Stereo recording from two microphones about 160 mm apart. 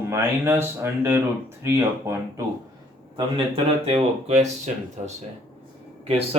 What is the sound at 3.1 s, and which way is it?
Speech, 35° right (ahead or behind).